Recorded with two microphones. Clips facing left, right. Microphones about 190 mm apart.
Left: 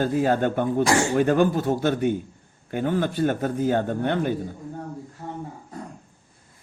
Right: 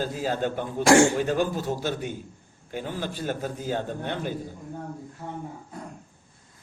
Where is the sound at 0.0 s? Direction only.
60° left (ahead or behind).